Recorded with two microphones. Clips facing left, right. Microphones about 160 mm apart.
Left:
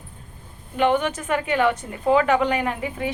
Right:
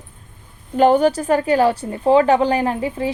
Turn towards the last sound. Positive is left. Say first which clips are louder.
# right 5 dB
turn(degrees=-30)  # may be behind; listen again after turning